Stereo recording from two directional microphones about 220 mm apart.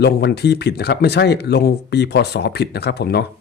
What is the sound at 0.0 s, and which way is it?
Speech, 50° left (ahead or behind).